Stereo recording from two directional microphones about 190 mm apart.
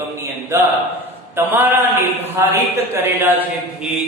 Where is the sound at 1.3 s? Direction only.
10° right (ahead or behind).